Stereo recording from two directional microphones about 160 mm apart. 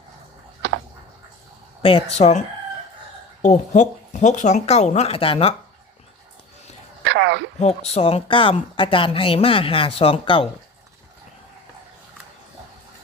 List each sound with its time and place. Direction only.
0.6 s a sound: 90° right
1.8 s speech: 35° left (ahead or behind)
2.1 s speech: 45° left (ahead or behind)
3.4 s speech: 50° left (ahead or behind)
7.0 s a sound: 90° right
7.6 s speech: 40° left (ahead or behind)